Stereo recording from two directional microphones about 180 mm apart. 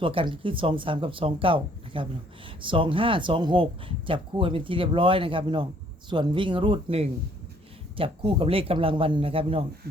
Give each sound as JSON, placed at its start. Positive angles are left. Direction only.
{"t": 0.0, "sound": "speech", "side_deg": -30}